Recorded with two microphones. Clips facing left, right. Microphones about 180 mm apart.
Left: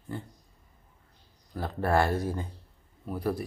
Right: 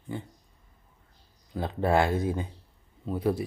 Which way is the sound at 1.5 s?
20° right (ahead or behind).